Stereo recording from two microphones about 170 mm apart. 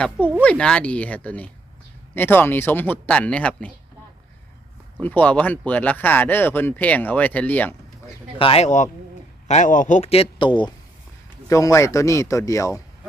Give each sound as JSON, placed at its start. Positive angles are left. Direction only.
{"t": 0.4, "sound": "speech", "side_deg": 5}
{"t": 4.9, "sound": "speech", "side_deg": 10}
{"t": 8.4, "sound": "speech", "side_deg": 35}